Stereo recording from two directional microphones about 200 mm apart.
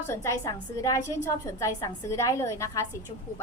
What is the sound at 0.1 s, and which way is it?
A woman's voice, 15° left (ahead or behind).